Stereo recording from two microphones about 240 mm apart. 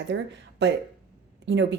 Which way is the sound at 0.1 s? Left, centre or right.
Right.